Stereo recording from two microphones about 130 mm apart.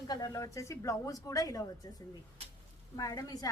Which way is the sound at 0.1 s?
30° left (ahead or behind).